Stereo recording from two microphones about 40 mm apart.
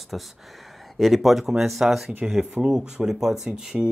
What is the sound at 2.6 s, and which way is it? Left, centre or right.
Speech, centre.